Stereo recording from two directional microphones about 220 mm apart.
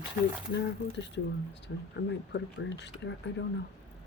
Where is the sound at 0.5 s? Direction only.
50° left (ahead or behind).